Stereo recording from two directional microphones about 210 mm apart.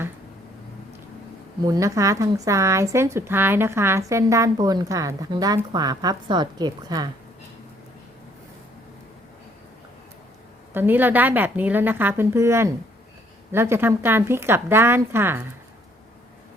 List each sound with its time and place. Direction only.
1.6 s speech: 15° right (ahead or behind)
10.8 s speech: 10° right (ahead or behind)